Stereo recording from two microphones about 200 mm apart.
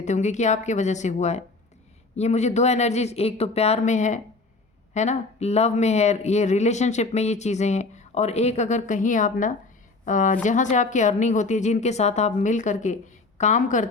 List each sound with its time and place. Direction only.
0.0 s speech: 35° left (ahead or behind)